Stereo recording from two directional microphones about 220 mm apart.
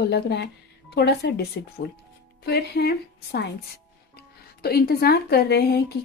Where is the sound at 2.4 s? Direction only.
50° left (ahead or behind).